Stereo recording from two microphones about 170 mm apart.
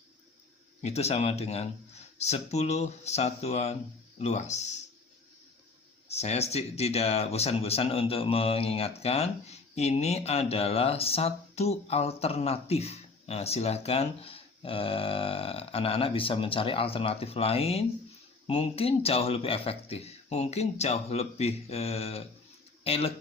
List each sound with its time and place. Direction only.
0.8 s speech: 40° left (ahead or behind)
6.1 s speech: 40° left (ahead or behind)